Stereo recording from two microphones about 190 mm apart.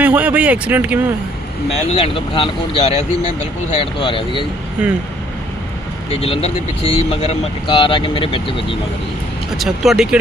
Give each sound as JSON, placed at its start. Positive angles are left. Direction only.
{"t": 0.0, "sound": "speech", "side_deg": -10}
{"t": 1.9, "sound": "speech", "side_deg": 30}
{"t": 4.8, "sound": "speech", "side_deg": -5}
{"t": 6.1, "sound": "speech", "side_deg": 30}
{"t": 9.6, "sound": "speech", "side_deg": 0}